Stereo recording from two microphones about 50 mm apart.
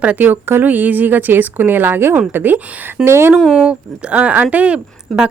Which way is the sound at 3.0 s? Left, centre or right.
Right.